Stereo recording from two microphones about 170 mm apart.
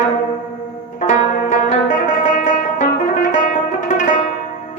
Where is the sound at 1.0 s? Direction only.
50° left (ahead or behind).